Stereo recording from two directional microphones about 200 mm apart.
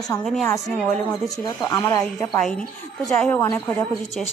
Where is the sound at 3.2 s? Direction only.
10° left (ahead or behind).